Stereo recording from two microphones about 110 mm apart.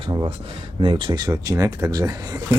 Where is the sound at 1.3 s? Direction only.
30° right (ahead or behind).